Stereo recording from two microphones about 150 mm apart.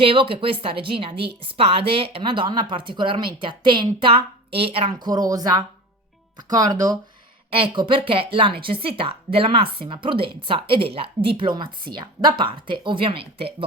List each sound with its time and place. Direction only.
0.0 s a woman's voice: 35° right (ahead or behind)
7.5 s a woman's voice: 35° right (ahead or behind)